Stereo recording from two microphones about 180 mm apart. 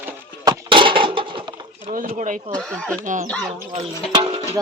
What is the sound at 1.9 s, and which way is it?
Speech, 45° right (ahead or behind).